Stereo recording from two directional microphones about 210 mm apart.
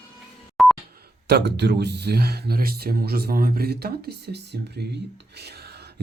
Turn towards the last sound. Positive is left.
turn(degrees=-50)  # may be behind; listen again after turning